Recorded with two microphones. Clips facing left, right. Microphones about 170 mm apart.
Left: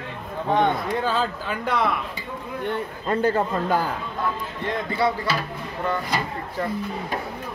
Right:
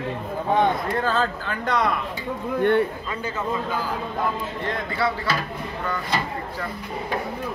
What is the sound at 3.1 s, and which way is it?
Speech, 55° left (ahead or behind).